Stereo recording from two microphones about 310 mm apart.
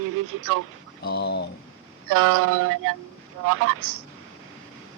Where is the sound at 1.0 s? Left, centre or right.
Left.